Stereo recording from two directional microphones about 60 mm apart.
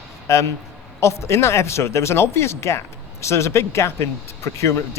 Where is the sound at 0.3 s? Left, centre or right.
Left.